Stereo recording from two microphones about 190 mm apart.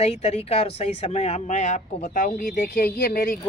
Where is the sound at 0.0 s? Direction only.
35° left (ahead or behind).